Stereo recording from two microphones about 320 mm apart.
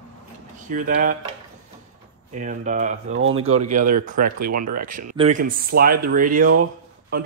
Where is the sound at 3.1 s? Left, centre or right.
Right.